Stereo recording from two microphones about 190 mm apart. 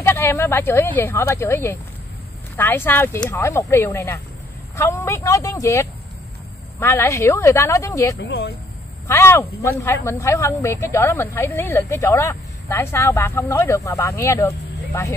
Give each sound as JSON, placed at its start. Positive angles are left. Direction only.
{"t": 0.0, "sound": "speech", "side_deg": 15}
{"t": 8.2, "sound": "speech", "side_deg": 60}
{"t": 9.0, "sound": "speech", "side_deg": 15}